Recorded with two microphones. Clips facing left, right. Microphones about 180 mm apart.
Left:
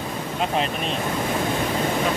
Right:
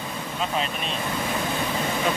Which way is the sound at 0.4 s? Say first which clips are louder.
Left 4 dB; 55° left (ahead or behind).